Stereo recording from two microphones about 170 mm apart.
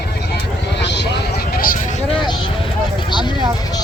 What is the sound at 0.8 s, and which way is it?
Vehicle, 90° left.